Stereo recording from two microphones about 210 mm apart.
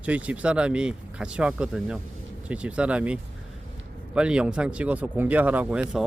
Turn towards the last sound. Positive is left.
turn(degrees=-5)  # may be behind; listen again after turning